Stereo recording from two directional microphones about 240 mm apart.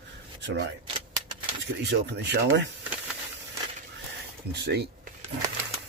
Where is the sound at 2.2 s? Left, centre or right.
Right.